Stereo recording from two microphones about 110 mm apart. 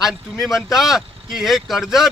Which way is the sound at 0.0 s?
Centre (ahead or behind).